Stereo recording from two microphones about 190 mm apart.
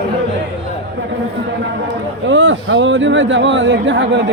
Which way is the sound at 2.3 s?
75° right (ahead or behind).